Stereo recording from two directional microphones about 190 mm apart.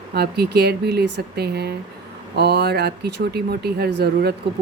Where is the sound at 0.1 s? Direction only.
55° right (ahead or behind).